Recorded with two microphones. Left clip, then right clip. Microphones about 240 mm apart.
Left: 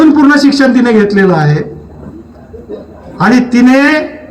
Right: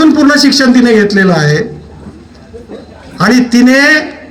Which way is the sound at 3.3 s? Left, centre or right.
Right.